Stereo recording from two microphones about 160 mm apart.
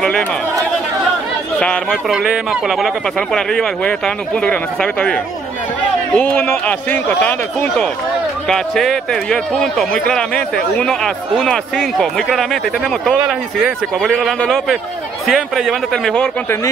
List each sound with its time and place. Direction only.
0.0 s speech: 5° left (ahead or behind)
1.9 s speech: 5° right (ahead or behind)